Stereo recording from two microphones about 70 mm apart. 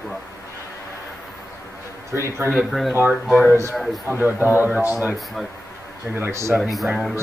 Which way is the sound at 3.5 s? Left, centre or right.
Right.